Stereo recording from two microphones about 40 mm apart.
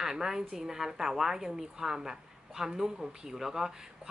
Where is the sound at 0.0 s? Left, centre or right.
Centre.